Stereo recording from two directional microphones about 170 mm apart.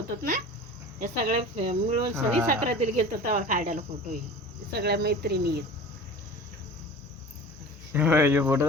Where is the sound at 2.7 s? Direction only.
40° right (ahead or behind).